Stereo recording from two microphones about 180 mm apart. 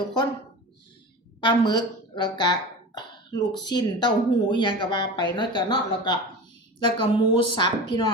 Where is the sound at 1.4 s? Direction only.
25° left (ahead or behind).